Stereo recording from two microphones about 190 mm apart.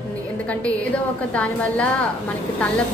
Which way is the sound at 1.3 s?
5° left (ahead or behind).